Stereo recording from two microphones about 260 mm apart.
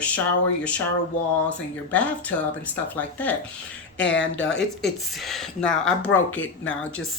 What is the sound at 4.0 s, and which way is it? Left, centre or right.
Speech, left.